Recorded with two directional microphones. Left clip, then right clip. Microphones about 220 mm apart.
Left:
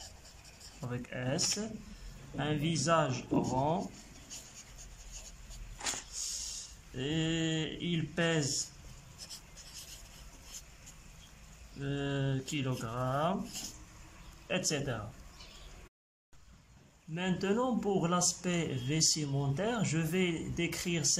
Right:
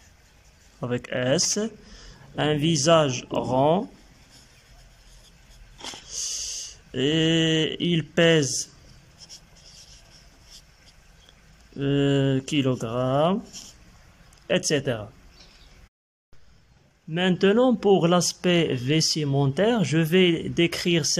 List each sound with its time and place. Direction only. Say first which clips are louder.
0.7 s speech: right 14 dB; 40° right (ahead or behind)
6.0 s dog: right 9 dB; 35° right (ahead or behind)
7.0 s speech: right 13 dB; 40° right (ahead or behind)
11.8 s speech: right 14 dB; 35° right (ahead or behind)
14.5 s speech: right 11 dB; 35° right (ahead or behind)
17.1 s speech: right 13 dB; 40° right (ahead or behind)